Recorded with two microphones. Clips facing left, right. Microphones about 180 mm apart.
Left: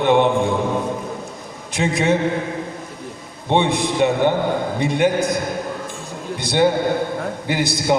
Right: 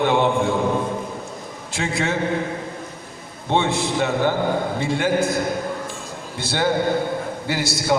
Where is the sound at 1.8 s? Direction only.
20° left (ahead or behind).